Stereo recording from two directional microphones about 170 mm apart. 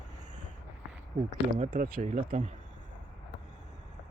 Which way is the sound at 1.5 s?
55° right (ahead or behind).